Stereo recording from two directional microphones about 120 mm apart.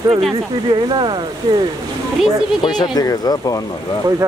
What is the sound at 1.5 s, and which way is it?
Speech, 30° right (ahead or behind).